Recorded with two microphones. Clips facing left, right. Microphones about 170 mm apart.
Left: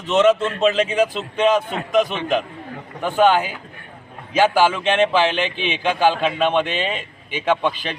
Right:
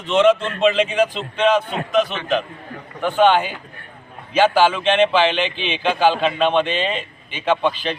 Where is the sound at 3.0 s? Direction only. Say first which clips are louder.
Right 1 dB; 10° left (ahead or behind).